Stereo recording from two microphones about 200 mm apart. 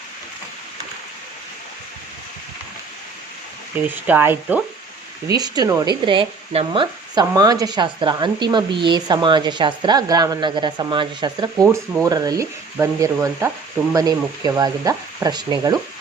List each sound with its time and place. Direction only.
3.8 s speech: 10° right (ahead or behind)